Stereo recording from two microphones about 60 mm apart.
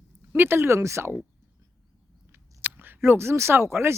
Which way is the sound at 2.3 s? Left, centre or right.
Right.